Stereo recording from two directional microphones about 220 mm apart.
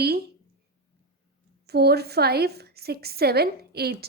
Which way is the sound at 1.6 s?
45° right (ahead or behind).